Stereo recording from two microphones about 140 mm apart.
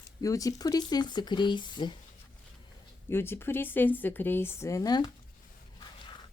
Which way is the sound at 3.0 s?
15° left (ahead or behind).